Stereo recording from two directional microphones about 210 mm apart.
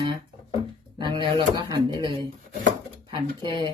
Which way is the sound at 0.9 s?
20° right (ahead or behind).